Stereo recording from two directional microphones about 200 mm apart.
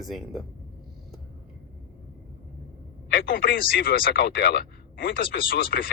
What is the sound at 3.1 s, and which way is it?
Speech, 50° left (ahead or behind).